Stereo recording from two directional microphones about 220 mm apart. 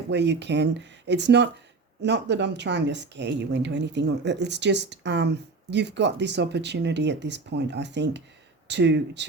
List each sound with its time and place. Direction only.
0.1 s speech: 50° right (ahead or behind)